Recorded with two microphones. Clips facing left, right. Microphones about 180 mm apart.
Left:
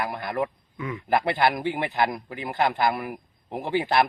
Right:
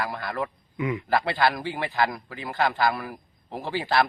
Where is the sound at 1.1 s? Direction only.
20° left (ahead or behind).